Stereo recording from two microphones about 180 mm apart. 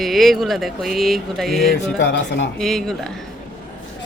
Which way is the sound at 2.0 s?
80° left.